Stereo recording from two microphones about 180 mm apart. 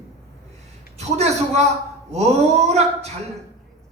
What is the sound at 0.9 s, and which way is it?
Music, 35° right (ahead or behind).